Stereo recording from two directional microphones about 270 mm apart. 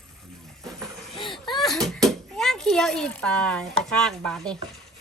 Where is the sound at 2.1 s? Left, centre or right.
Centre.